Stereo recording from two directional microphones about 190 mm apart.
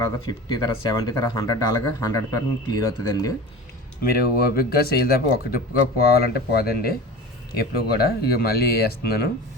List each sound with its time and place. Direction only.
0.0 s speech: 20° left (ahead or behind)
4.1 s speech: 55° left (ahead or behind)